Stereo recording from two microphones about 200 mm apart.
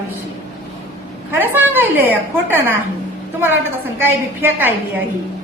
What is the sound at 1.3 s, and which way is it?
A woman's voice, 10° right (ahead or behind).